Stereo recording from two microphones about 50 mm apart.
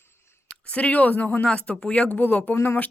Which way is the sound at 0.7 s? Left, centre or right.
Left.